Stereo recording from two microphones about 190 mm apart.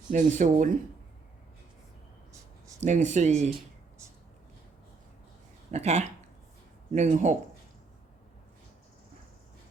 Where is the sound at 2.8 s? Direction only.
40° right (ahead or behind).